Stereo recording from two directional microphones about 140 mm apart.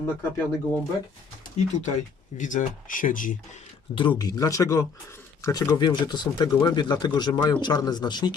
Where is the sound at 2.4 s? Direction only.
65° left (ahead or behind).